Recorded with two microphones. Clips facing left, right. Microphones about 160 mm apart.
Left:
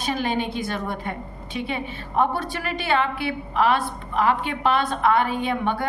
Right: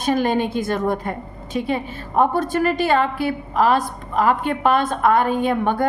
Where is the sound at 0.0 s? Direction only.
50° right (ahead or behind).